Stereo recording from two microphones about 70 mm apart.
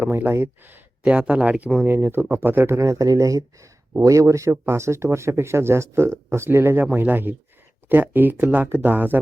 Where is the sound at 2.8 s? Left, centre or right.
Right.